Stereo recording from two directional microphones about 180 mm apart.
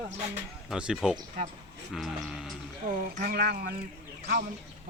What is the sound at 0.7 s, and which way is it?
Speech, 5° right (ahead or behind).